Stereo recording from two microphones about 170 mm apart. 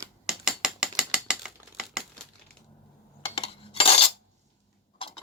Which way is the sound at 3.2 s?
35° left (ahead or behind).